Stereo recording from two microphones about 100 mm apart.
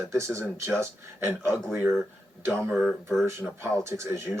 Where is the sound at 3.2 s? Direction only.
25° right (ahead or behind).